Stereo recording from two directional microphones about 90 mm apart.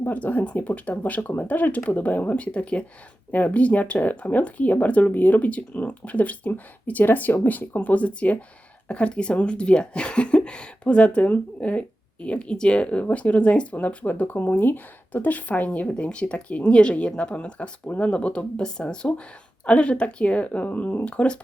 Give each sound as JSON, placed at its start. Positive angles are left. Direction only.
{"t": 0.0, "sound": "speech", "side_deg": 20}